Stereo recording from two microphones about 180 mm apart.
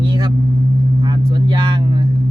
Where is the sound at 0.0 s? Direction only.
25° right (ahead or behind).